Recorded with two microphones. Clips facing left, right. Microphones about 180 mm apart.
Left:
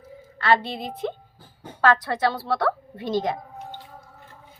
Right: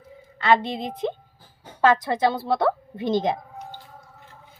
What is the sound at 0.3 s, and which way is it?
A woman's voice, 20° right (ahead or behind).